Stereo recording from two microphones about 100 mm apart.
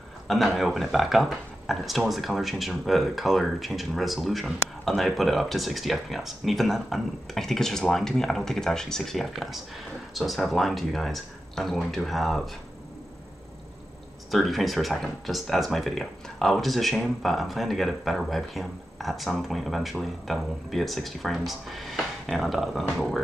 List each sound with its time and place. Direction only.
0.3 s speech: centre (ahead or behind)
14.3 s speech: centre (ahead or behind)